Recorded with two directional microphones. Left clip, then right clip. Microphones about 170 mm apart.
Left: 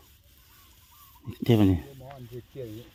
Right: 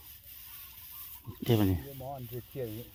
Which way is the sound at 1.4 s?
40° left (ahead or behind).